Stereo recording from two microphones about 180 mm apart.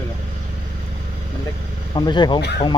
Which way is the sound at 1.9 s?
25° left (ahead or behind).